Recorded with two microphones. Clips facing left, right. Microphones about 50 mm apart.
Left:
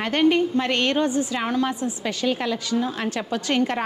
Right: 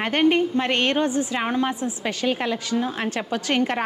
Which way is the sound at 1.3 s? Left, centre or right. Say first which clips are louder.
Even; right.